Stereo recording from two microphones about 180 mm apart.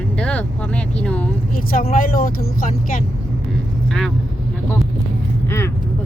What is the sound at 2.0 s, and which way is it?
Speech, 50° left (ahead or behind).